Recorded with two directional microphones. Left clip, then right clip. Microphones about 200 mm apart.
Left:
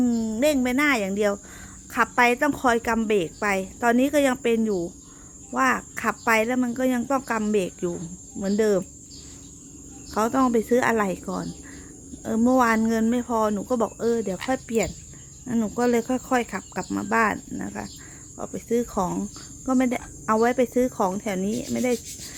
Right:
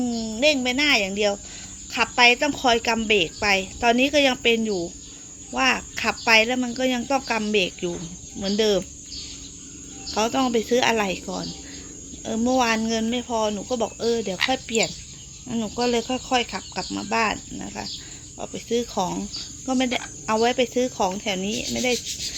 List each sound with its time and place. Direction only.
0.0 s a sound: 25° left (ahead or behind)
0.4 s speech: 25° left (ahead or behind)
2.4 s speech: 20° left (ahead or behind)
2.8 s speech: centre (ahead or behind)
3.1 s speech: 15° left (ahead or behind)
7.5 s speech: 10° left (ahead or behind)
10.2 s speech: 10° left (ahead or behind)
11.0 s speech: 15° left (ahead or behind)
19.6 s cricket: 15° left (ahead or behind)
20.7 s speech: 20° left (ahead or behind)